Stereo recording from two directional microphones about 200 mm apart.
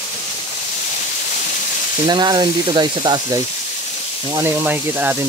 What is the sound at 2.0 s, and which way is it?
Speech, 20° right (ahead or behind).